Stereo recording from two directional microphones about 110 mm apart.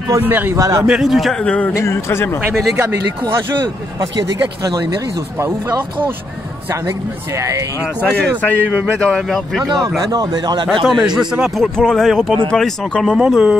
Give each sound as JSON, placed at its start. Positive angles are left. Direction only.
{"t": 0.2, "sound": "a man's voice", "side_deg": -20}
{"t": 0.6, "sound": "a man's voice", "side_deg": -30}
{"t": 0.8, "sound": "speech", "side_deg": -5}
{"t": 1.4, "sound": "speech", "side_deg": 10}
{"t": 1.7, "sound": "speech", "side_deg": 25}
{"t": 2.8, "sound": "speech", "side_deg": -25}
{"t": 4.6, "sound": "a man's voice", "side_deg": -35}
{"t": 7.3, "sound": "speech", "side_deg": -30}
{"t": 8.2, "sound": "speech", "side_deg": 15}
{"t": 9.0, "sound": "speech", "side_deg": 5}
{"t": 10.1, "sound": "a man's voice", "side_deg": -40}
{"t": 10.9, "sound": "speech", "side_deg": -5}